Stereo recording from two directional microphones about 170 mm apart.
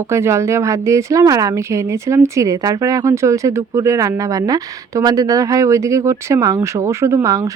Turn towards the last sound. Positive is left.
turn(degrees=-20)  # may be behind; listen again after turning